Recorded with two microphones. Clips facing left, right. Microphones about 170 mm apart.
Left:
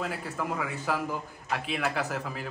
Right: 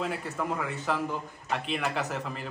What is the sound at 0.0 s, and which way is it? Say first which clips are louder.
A man's voice: right 1 dB; centre (ahead or behind).